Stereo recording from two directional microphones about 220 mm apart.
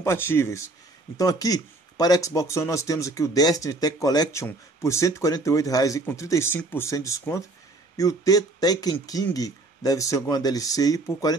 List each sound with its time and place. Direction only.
0.0 s speech: 10° left (ahead or behind)